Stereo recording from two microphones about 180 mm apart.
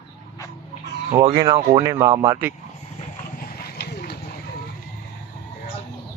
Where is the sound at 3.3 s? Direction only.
60° left (ahead or behind).